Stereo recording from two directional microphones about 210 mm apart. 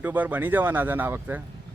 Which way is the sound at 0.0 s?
10° right (ahead or behind).